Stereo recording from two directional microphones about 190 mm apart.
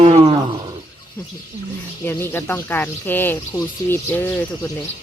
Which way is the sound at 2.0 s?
10° left (ahead or behind).